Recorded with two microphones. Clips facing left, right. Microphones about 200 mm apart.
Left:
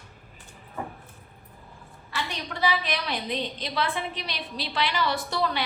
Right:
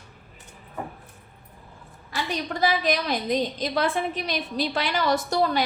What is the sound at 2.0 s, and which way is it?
A woman's voice, 40° right (ahead or behind).